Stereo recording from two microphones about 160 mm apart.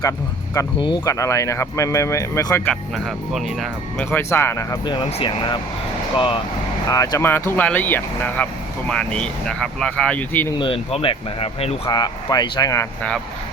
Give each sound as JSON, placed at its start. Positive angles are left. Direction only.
{"t": 0.8, "sound": "speech", "side_deg": 25}
{"t": 2.6, "sound": "speech", "side_deg": 0}
{"t": 4.1, "sound": "speech", "side_deg": 15}
{"t": 4.9, "sound": "speech", "side_deg": 30}
{"t": 6.8, "sound": "speech", "side_deg": 20}
{"t": 10.6, "sound": "speech", "side_deg": 35}
{"t": 11.9, "sound": "speech", "side_deg": 25}